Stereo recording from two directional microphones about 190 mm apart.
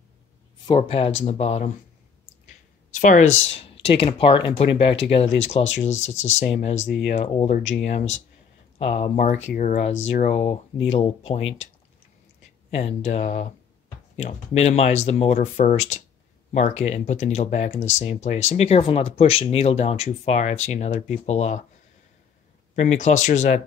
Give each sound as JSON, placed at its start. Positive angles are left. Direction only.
{"t": 0.7, "sound": "speech", "side_deg": 30}
{"t": 2.9, "sound": "speech", "side_deg": 40}
{"t": 11.4, "sound": "speech", "side_deg": 90}
{"t": 12.7, "sound": "speech", "side_deg": 35}
{"t": 22.8, "sound": "speech", "side_deg": 40}